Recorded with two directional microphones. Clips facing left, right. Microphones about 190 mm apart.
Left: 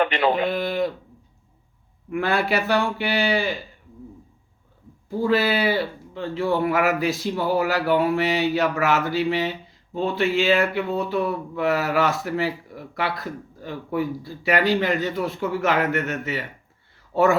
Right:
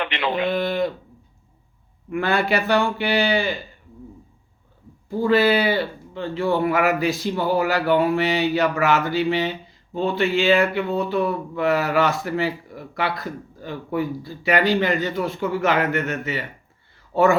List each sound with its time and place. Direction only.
0.0 s speech: 40° left (ahead or behind)
0.4 s a sound: centre (ahead or behind)
2.0 s speech: centre (ahead or behind)
5.0 s speech: centre (ahead or behind)